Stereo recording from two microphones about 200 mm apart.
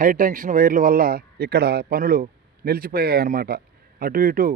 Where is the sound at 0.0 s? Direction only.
45° right (ahead or behind).